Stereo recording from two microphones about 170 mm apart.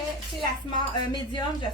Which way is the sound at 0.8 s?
25° left (ahead or behind).